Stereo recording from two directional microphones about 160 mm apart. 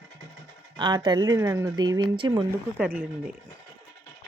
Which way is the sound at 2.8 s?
10° right (ahead or behind).